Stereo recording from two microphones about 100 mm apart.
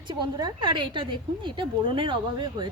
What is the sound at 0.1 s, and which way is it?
A woman's voice, 50° right (ahead or behind).